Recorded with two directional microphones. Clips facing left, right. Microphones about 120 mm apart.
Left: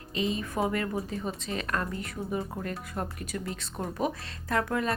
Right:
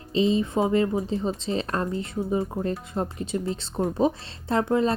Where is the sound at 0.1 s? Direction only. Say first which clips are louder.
Right 8 dB; 30° right (ahead or behind).